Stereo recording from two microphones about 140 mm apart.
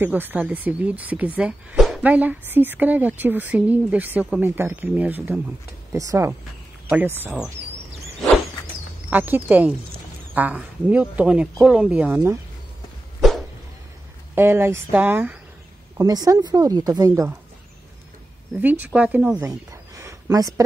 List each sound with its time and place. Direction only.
0.0 s speech: 15° right (ahead or behind)
5.9 s a woman's voice: 20° right (ahead or behind)
9.1 s speech: 10° right (ahead or behind)
14.3 s speech: 15° right (ahead or behind)
16.0 s a woman's voice: 25° right (ahead or behind)
18.6 s speech: 10° right (ahead or behind)
19.3 s a sound: 20° right (ahead or behind)